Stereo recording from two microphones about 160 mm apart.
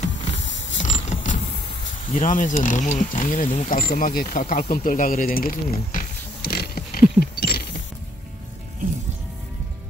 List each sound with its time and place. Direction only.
0.7 s creak: 45° left (ahead or behind)
2.1 s speech: 55° left (ahead or behind); by 7.6 s 75° left (ahead or behind)